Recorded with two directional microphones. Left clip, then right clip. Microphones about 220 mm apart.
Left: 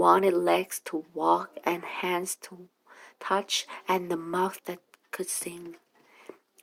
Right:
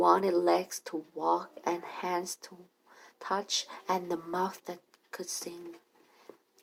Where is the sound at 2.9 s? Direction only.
40° left (ahead or behind).